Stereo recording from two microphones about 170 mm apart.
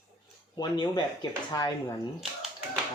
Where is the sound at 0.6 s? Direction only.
25° left (ahead or behind).